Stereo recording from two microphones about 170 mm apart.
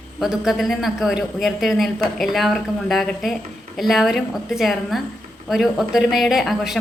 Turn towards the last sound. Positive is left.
turn(degrees=0)  # may be behind; listen again after turning